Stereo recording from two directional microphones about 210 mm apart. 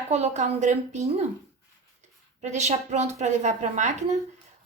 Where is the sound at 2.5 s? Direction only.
35° right (ahead or behind).